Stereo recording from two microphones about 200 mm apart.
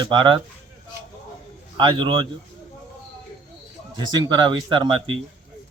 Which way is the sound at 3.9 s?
20° right (ahead or behind).